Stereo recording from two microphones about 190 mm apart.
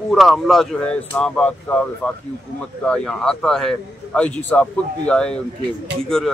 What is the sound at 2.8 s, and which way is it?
A man's voice, 5° left (ahead or behind).